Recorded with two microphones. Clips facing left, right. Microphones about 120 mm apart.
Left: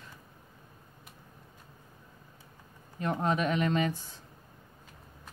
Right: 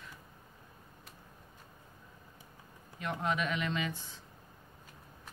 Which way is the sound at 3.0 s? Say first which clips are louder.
Left 5 dB; 35° left (ahead or behind).